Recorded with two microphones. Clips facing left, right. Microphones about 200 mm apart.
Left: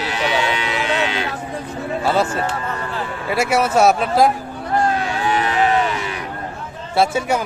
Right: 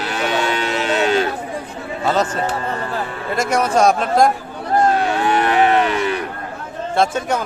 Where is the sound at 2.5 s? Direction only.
40° right (ahead or behind).